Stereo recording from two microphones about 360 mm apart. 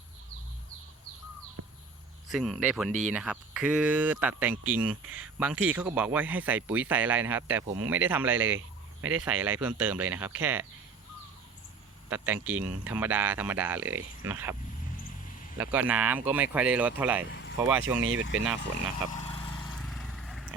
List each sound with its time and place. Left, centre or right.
1.6 s a sound: right
2.3 s speech: centre
12.0 s speech: centre
15.5 s speech: centre
18.0 s speech: right
19.1 s vehicle: centre
19.6 s vehicle: centre